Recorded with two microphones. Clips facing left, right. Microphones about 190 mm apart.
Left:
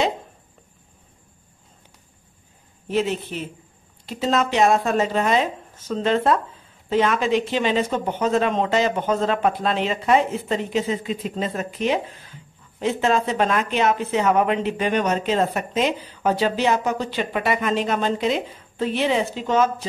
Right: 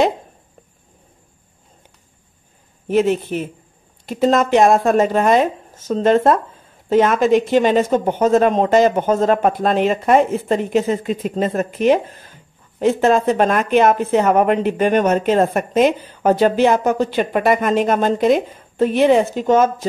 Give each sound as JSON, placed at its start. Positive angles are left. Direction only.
{"t": 2.9, "sound": "speech", "side_deg": -50}